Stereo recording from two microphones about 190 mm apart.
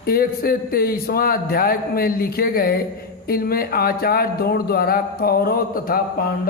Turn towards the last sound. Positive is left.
turn(degrees=50)  # may be behind; listen again after turning